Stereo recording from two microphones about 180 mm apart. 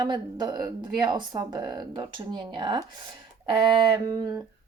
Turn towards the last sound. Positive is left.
turn(degrees=-20)  # may be behind; listen again after turning